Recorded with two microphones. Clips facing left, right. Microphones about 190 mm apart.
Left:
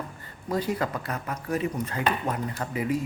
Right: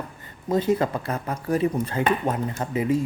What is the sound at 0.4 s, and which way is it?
Speech, 25° right (ahead or behind).